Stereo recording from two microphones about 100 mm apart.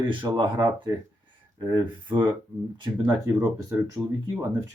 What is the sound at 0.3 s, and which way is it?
Speech, 50° right (ahead or behind).